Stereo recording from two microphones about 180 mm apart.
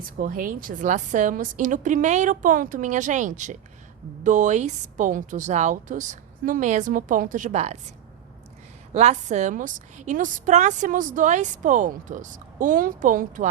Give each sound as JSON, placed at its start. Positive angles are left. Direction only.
{"t": 0.0, "sound": "a woman's voice", "side_deg": -50}
{"t": 8.9, "sound": "a woman's voice", "side_deg": -40}